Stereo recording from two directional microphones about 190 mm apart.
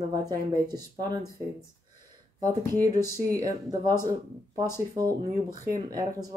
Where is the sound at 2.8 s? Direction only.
20° right (ahead or behind).